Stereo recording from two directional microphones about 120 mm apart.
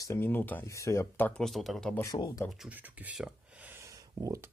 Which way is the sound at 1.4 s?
Centre (ahead or behind).